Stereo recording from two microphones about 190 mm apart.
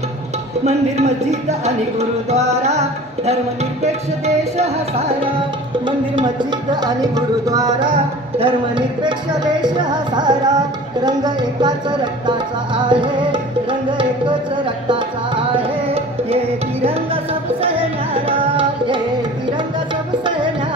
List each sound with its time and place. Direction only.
0.7 s music: 35° right (ahead or behind)
4.6 s music: 35° right (ahead or behind)
5.9 s music: 25° right (ahead or behind)